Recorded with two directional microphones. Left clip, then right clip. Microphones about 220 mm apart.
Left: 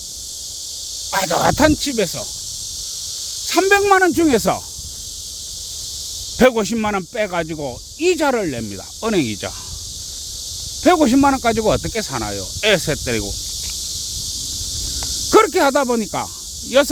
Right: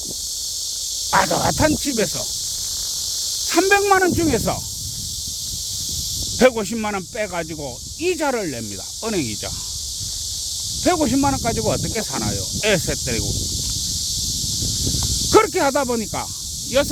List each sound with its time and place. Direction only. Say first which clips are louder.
1.1 s speech: left 1 dB; 20° left (ahead or behind)
3.5 s speech: left 2 dB; 15° left (ahead or behind)
6.4 s speech: left 2 dB; 20° left (ahead or behind)
10.8 s speech: left 5 dB; 25° left (ahead or behind)
15.3 s speech: left 3 dB; 15° left (ahead or behind)